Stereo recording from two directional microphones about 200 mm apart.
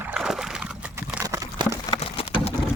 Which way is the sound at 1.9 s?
30° left (ahead or behind).